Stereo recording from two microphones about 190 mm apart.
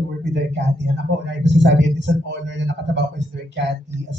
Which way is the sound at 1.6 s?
65° right (ahead or behind).